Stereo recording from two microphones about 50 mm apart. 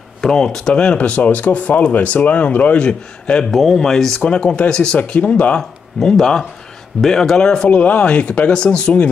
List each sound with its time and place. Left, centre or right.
0.2 s speech: centre; by 2.9 s left
2.9 s speech: centre
4.2 s speech: left
5.6 s speech: centre
7.8 s speech: left